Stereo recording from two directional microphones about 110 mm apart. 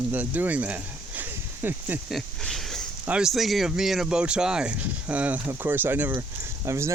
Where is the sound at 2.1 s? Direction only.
5° left (ahead or behind).